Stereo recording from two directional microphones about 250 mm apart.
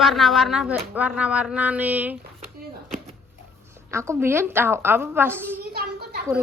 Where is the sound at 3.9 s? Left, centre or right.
Centre.